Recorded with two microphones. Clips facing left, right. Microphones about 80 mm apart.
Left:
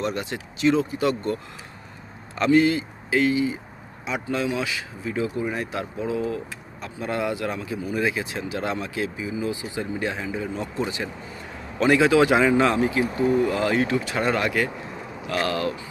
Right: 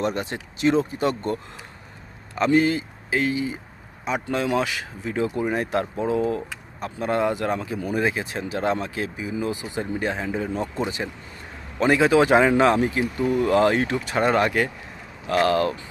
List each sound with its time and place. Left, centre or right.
0.0 s speech: right
2.5 s speech: right
10.8 s speech: right
13.1 s speech: left
13.4 s speech: right